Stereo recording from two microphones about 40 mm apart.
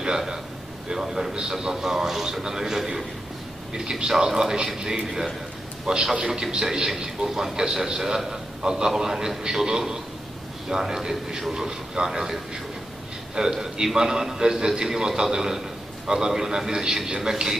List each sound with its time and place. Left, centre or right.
0.9 s a man's voice: centre
5.8 s a man's voice: centre